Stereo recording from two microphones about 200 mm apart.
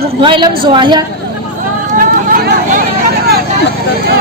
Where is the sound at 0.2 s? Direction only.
25° right (ahead or behind).